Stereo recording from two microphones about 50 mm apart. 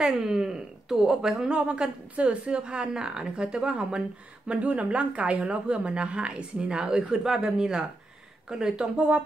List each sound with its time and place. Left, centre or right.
0.0 s speech: centre
1.6 s a woman's voice: right